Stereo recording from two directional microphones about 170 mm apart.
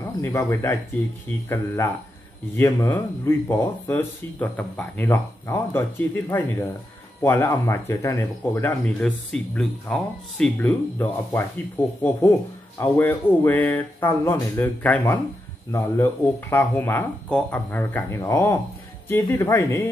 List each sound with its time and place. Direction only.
0.0 s speech: 15° left (ahead or behind)
2.5 s speech: 15° left (ahead or behind)